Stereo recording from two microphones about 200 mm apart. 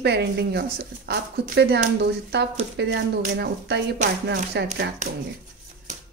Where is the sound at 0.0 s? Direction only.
55° right (ahead or behind).